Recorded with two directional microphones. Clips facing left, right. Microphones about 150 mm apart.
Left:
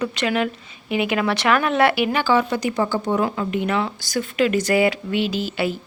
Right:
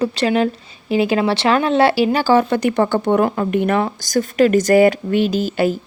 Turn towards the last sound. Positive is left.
turn(degrees=-45)  # may be behind; listen again after turning